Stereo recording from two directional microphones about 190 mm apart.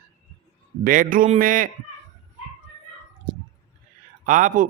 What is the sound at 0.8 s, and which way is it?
Speech, 45° right (ahead or behind).